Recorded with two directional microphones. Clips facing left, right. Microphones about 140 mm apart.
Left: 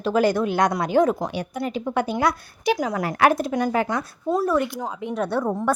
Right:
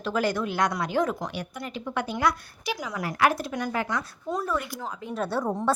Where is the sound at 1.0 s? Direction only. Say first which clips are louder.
Left 7 dB; 30° left (ahead or behind).